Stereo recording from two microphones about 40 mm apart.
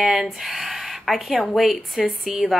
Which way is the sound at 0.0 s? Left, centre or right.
Centre.